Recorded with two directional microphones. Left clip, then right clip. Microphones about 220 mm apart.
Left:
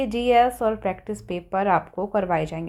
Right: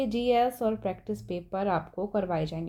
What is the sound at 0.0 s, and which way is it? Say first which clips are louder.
A woman's voice: left 7 dB; 20° left (ahead or behind).